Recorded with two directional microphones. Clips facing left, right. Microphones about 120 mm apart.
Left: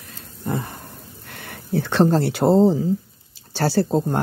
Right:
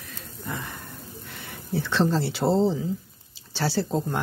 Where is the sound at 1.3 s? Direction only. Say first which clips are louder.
Left 5 dB; 55° left (ahead or behind).